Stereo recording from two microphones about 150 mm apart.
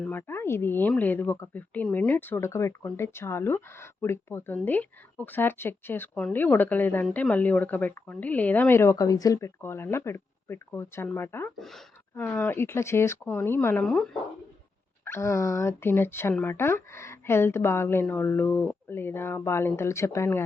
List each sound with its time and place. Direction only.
0.0 s a woman's voice: 15° left (ahead or behind)
11.5 s a woman's voice: centre (ahead or behind)
15.0 s a woman's voice: 15° left (ahead or behind)